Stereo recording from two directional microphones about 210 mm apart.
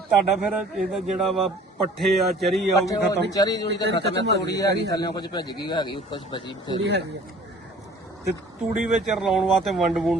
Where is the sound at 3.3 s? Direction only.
20° left (ahead or behind).